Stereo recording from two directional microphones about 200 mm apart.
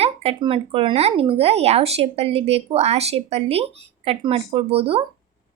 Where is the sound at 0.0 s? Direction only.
30° right (ahead or behind).